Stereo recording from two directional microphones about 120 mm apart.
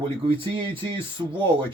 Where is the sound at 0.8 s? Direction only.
45° right (ahead or behind).